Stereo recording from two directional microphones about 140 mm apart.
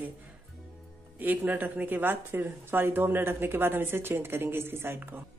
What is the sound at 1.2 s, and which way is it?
Speech, 10° right (ahead or behind).